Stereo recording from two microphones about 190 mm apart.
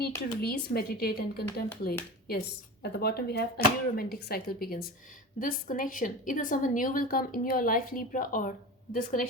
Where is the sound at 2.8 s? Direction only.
55° left (ahead or behind).